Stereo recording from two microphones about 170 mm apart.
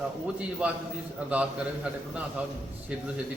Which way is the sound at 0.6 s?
5° right (ahead or behind).